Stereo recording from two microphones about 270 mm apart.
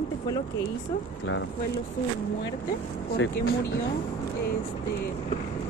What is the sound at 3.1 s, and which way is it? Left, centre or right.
Speech, left.